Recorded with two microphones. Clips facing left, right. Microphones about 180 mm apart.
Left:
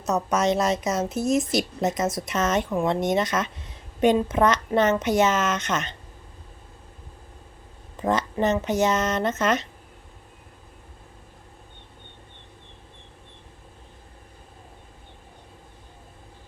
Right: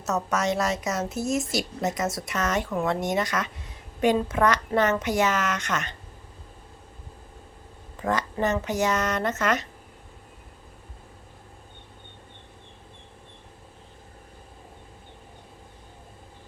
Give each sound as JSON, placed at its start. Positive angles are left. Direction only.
{"t": 0.0, "sound": "a woman's voice", "side_deg": 20}
{"t": 8.0, "sound": "a woman's voice", "side_deg": 20}